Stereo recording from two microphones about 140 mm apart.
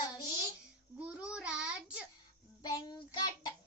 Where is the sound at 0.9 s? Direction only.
10° right (ahead or behind).